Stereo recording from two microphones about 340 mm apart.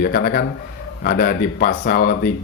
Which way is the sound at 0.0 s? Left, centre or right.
Left.